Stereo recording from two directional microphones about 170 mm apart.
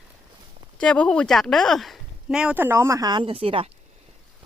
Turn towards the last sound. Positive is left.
turn(degrees=-35)  # may be behind; listen again after turning